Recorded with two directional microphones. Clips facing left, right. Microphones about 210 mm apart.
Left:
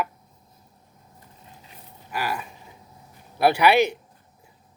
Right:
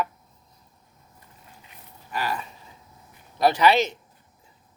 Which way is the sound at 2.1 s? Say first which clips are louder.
Even; 10° left (ahead or behind).